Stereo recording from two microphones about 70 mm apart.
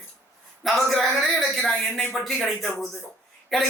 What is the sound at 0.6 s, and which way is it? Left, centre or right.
Speech, centre.